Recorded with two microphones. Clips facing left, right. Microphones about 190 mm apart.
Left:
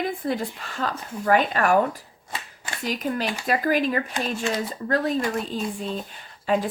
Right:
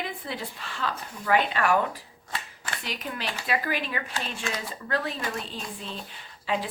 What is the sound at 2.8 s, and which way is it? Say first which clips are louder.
Speech: left 9 dB; 45° left (ahead or behind).